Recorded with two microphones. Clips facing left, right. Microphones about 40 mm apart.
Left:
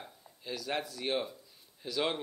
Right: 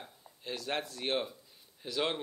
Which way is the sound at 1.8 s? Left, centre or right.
Centre.